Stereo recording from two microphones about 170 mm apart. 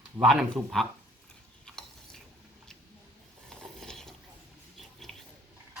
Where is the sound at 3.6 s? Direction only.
5° left (ahead or behind).